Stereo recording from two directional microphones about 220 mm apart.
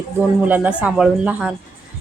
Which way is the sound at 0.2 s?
10° right (ahead or behind).